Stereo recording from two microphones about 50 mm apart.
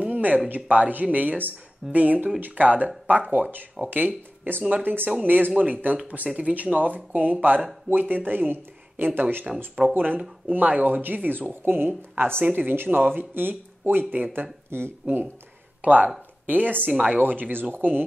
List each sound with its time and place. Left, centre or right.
0.0 s a sound: right
0.7 s speech: right
14.7 s speech: right
15.8 s a woman's voice: right
16.9 s speech: right
17.2 s speech: right